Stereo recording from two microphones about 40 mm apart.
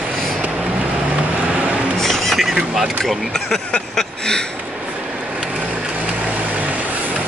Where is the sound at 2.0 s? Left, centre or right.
Centre.